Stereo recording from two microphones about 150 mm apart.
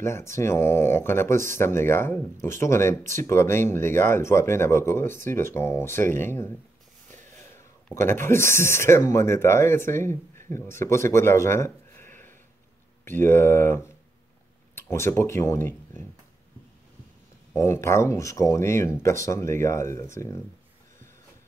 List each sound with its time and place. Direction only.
0.0 s speech: 20° left (ahead or behind)
7.5 s speech: 20° left (ahead or behind)
17.6 s speech: 20° left (ahead or behind)